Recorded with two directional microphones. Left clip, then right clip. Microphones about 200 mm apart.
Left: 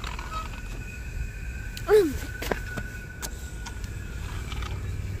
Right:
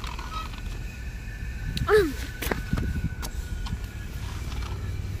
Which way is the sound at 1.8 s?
40° left (ahead or behind).